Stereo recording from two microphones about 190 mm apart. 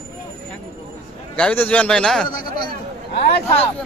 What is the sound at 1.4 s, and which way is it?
Speech, 10° left (ahead or behind).